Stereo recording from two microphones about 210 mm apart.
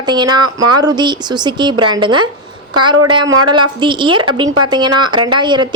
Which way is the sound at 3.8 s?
20° right (ahead or behind).